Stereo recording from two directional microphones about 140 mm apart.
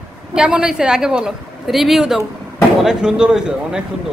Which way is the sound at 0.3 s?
5° right (ahead or behind).